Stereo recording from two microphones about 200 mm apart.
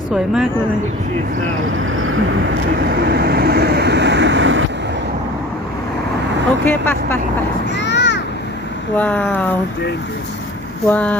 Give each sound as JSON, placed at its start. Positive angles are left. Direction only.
{"t": 1.7, "sound": "vehicle", "side_deg": -90}
{"t": 2.8, "sound": "vehicle", "side_deg": -50}
{"t": 6.7, "sound": "speech", "side_deg": 10}
{"t": 7.8, "sound": "a sound", "side_deg": 60}
{"t": 9.0, "sound": "speech", "side_deg": 10}
{"t": 10.8, "sound": "speech", "side_deg": 5}